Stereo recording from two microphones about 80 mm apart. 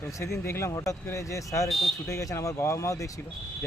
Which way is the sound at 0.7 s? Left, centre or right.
Left.